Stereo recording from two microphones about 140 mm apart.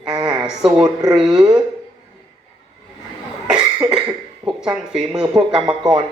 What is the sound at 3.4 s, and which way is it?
Cough, 5° right (ahead or behind).